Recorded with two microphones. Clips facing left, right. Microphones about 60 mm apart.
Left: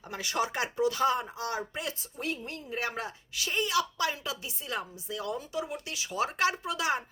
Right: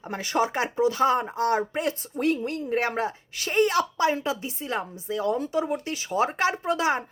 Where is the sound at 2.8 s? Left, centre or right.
Right.